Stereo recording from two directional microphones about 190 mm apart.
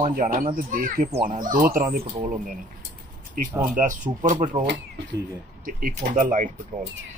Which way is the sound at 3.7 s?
45° right (ahead or behind).